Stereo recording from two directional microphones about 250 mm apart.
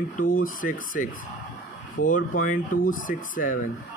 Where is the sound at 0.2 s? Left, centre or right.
Left.